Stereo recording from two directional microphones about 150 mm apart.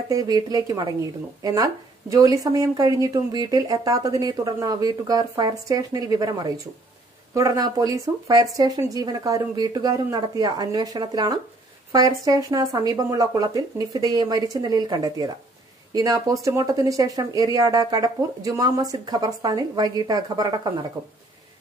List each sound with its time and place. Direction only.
0.1 s speech: 25° right (ahead or behind)